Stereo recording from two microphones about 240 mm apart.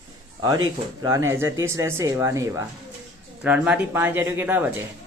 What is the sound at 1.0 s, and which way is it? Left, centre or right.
Speech, centre.